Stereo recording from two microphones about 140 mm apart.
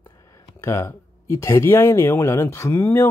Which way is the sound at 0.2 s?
20° left (ahead or behind).